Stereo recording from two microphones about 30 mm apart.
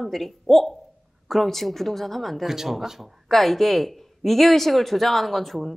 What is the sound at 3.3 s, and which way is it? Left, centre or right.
Speech, centre.